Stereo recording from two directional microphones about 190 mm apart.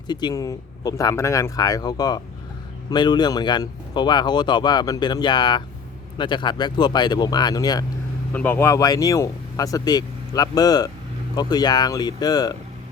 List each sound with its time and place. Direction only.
0.1 s speech: 20° left (ahead or behind)
8.3 s speech: 10° left (ahead or behind)